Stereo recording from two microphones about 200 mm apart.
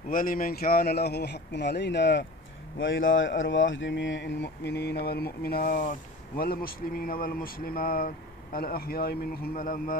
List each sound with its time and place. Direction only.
0.1 s speech: 45° left (ahead or behind); by 2.2 s 60° left (ahead or behind)
2.8 s speech: 70° left (ahead or behind); by 9.9 s 45° left (ahead or behind)